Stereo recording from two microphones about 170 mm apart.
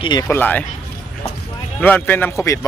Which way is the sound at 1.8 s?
10° left (ahead or behind).